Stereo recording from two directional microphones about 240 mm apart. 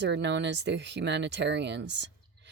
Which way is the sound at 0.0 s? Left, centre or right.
Right.